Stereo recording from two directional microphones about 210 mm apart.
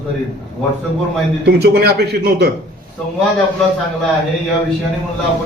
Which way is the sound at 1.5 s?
50° right (ahead or behind).